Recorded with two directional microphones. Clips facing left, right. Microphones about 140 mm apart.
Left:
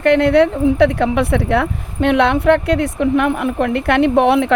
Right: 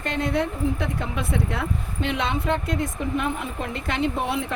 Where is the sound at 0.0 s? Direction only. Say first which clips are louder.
Left 13 dB; 70° left (ahead or behind).